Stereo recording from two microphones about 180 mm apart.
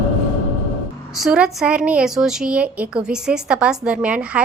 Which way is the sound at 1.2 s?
5° right (ahead or behind).